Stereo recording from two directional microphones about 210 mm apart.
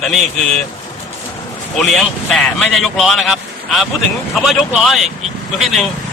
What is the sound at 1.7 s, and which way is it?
A man's voice, centre (ahead or behind).